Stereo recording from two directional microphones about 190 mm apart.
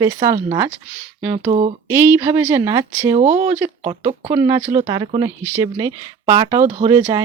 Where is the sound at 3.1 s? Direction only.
35° right (ahead or behind).